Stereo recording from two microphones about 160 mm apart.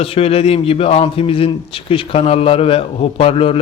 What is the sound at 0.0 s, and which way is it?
A man's voice, 35° left (ahead or behind).